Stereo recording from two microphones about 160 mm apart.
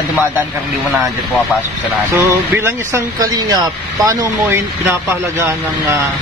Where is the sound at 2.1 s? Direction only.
10° right (ahead or behind).